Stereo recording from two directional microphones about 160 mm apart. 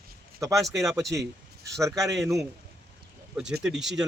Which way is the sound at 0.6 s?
Centre (ahead or behind).